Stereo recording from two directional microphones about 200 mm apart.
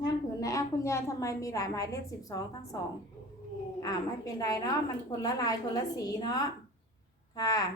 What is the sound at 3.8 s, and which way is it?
A woman's voice, 15° left (ahead or behind).